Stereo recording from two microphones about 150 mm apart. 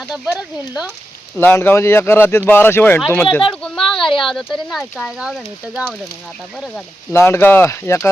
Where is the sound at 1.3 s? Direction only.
15° left (ahead or behind).